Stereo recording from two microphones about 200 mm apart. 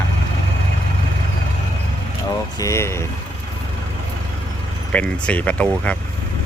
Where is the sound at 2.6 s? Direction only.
15° left (ahead or behind).